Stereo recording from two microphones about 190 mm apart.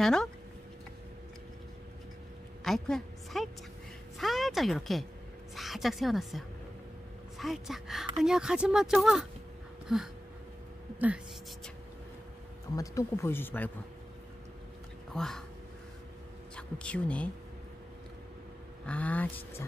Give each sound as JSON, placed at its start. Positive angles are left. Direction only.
{"t": 0.0, "sound": "speech", "side_deg": 5}
{"t": 2.6, "sound": "a woman's voice", "side_deg": 0}
{"t": 4.2, "sound": "a sound", "side_deg": 0}
{"t": 5.6, "sound": "speech", "side_deg": 0}
{"t": 12.7, "sound": "speech", "side_deg": 15}
{"t": 15.1, "sound": "speech", "side_deg": 0}
{"t": 16.5, "sound": "speech", "side_deg": 5}
{"t": 18.9, "sound": "speech", "side_deg": 10}